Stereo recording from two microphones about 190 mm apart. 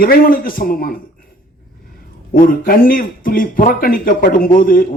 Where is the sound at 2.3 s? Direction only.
45° left (ahead or behind).